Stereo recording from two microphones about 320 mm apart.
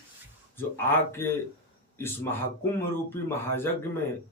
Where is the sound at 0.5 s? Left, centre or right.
Centre.